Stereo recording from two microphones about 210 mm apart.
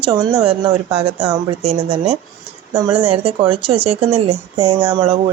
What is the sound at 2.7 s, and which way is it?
Speech, 10° right (ahead or behind).